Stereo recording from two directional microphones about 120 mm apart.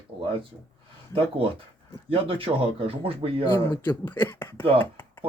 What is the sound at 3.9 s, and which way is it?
Speech, 15° left (ahead or behind).